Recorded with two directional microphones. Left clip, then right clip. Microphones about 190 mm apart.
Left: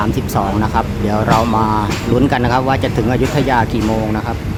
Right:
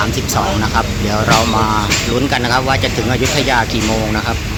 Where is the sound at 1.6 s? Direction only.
15° left (ahead or behind).